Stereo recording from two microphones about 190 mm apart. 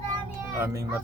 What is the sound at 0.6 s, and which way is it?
Speech, 15° right (ahead or behind).